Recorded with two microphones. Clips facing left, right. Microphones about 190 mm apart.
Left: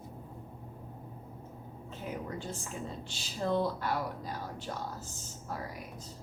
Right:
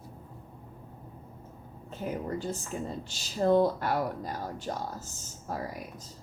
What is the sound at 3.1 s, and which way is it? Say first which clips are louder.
Speech: right 8 dB; 45° right (ahead or behind).